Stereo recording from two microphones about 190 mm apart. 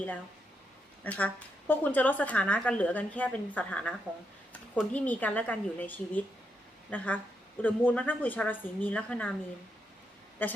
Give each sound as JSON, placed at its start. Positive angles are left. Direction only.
{"t": 1.0, "sound": "a woman's voice", "side_deg": 10}